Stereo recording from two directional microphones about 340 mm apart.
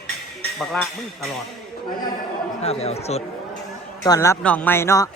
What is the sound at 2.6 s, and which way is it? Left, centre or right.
A man's voice, centre.